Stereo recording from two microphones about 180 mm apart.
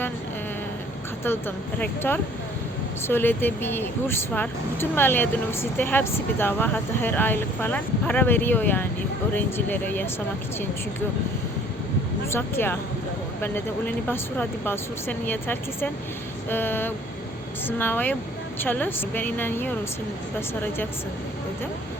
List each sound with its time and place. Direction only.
1.2 s speech: 10° left (ahead or behind)
12.3 s speech: 10° left (ahead or behind)